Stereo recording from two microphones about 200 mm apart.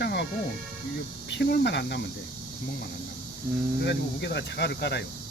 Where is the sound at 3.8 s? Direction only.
60° left (ahead or behind).